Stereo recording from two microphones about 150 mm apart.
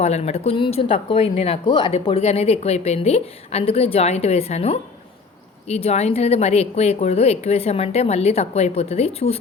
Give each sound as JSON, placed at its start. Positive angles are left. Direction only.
{"t": 0.0, "sound": "speech", "side_deg": 45}